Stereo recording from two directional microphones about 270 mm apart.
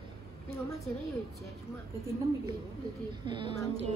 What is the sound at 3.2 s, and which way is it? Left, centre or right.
Speech, centre.